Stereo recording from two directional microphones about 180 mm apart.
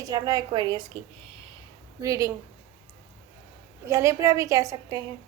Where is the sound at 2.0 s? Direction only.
15° right (ahead or behind).